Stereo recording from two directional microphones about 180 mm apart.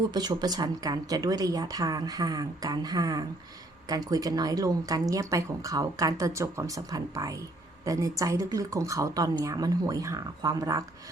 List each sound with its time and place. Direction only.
0.1 s speech: 20° right (ahead or behind)